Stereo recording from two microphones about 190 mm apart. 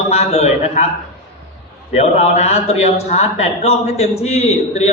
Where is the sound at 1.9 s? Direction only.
35° left (ahead or behind).